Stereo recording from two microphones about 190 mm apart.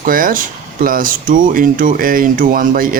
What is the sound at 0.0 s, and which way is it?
Speech, 45° right (ahead or behind).